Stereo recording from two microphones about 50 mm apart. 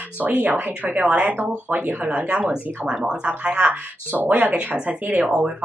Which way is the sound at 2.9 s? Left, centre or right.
Centre.